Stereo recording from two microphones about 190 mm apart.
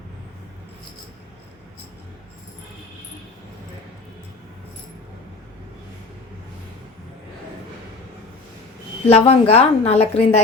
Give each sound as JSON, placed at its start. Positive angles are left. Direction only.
{"t": 9.0, "sound": "a woman's voice", "side_deg": 30}